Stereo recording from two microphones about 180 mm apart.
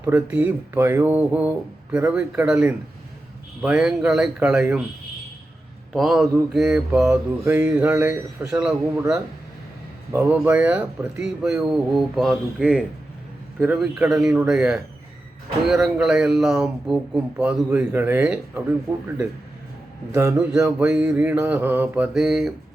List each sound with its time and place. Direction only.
0.0 s mantra: 10° right (ahead or behind)
3.6 s speech: 5° right (ahead or behind)
5.9 s speech: centre (ahead or behind)
6.5 s mantra: centre (ahead or behind)
10.1 s mantra: 15° right (ahead or behind)
10.3 s speech: 10° right (ahead or behind)
18.9 s mantra: 10° right (ahead or behind)
20.1 s mantra: 15° right (ahead or behind)